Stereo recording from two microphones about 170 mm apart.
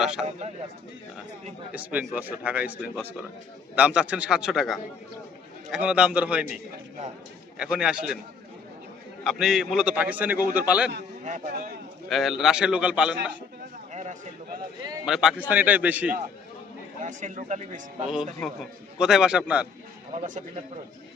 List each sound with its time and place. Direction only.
0.2 s a man's voice: 5° left (ahead or behind)
1.7 s a man's voice: 10° right (ahead or behind)
7.6 s a man's voice: 5° right (ahead or behind)
9.2 s a man's voice: 5° right (ahead or behind)
11.2 s speech: 45° right (ahead or behind)
12.0 s a man's voice: centre (ahead or behind)
13.9 s a sound: 45° right (ahead or behind)
15.0 s a man's voice: 5° right (ahead or behind)
17.0 s a man's voice: 45° right (ahead or behind)
18.4 s a man's voice: centre (ahead or behind)
20.1 s a man's voice: 50° right (ahead or behind)